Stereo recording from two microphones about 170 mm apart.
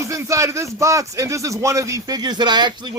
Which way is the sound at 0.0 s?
20° right (ahead or behind).